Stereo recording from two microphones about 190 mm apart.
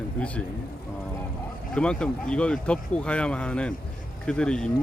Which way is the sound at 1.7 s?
5° left (ahead or behind).